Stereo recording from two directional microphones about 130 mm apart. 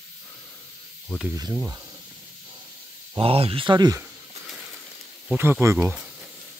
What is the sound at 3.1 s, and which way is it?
Speech, 45° right (ahead or behind).